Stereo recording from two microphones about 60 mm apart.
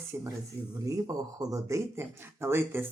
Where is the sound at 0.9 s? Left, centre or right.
Right.